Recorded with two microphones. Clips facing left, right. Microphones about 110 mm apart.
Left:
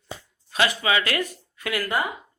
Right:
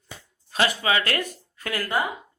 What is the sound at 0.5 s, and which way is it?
Speech, 35° right (ahead or behind).